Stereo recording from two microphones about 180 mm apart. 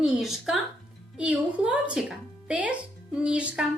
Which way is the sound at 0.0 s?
Centre (ahead or behind).